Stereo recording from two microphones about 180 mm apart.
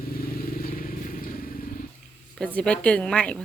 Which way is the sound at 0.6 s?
50° left (ahead or behind).